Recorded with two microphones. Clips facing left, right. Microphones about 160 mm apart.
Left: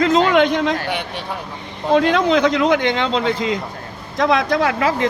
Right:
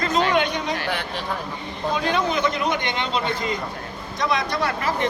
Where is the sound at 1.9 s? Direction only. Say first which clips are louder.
Left 9 dB; 90° left.